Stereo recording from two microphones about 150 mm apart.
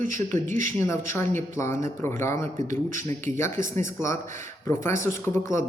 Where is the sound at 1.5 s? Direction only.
20° left (ahead or behind).